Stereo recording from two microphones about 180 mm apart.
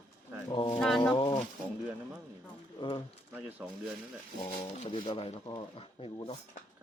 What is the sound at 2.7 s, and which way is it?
Speech, 25° left (ahead or behind).